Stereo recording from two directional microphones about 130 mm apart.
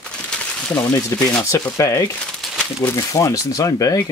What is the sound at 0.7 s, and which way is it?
Speech, 15° left (ahead or behind).